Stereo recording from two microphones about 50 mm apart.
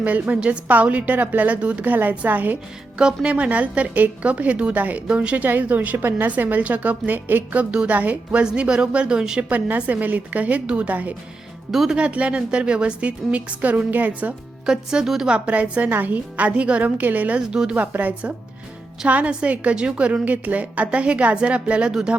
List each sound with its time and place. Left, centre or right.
0.0 s a woman's voice: right
0.7 s a woman's voice: right
3.2 s a woman's voice: right
5.5 s a woman's voice: right; by 9.4 s centre
9.4 s a woman's voice: right
11.7 s speech: centre
11.9 s a woman's voice: right
14.7 s speech: centre
15.3 s a woman's voice: right
15.9 s a woman's voice: right
16.5 s a woman's voice: right
17.0 s a woman's voice: right
17.5 s speech: centre
17.7 s a woman's voice: right; by 22.1 s centre